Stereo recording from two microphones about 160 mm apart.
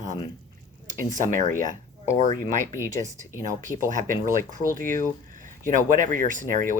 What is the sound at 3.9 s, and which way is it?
Speech, 55° right (ahead or behind).